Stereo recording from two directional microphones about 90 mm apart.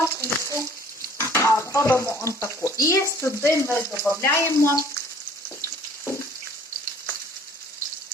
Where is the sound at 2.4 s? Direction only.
30° left (ahead or behind).